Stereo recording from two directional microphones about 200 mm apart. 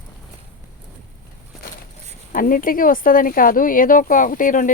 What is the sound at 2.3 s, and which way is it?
Speech, 45° left (ahead or behind).